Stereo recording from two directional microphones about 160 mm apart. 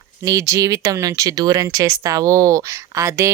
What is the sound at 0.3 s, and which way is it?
Speech, 20° right (ahead or behind).